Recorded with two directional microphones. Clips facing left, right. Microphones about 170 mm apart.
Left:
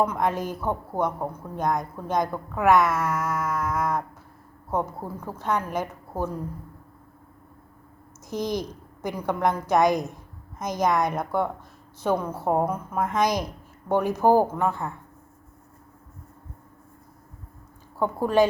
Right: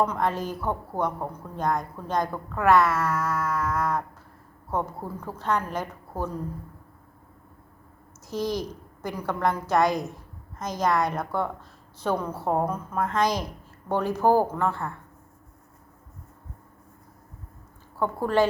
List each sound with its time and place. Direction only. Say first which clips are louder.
0.0 s a woman's voice: left 1 dB; 10° left (ahead or behind)
8.3 s a woman's voice: even; 20° left (ahead or behind)
17.9 s speech: left 2 dB; 15° left (ahead or behind)